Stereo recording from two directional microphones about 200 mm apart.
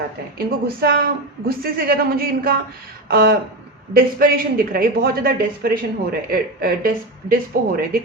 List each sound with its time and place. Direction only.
0.3 s speech: 50° right (ahead or behind)